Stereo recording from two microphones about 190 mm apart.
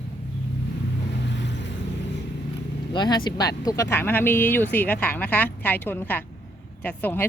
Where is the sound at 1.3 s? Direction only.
70° left (ahead or behind).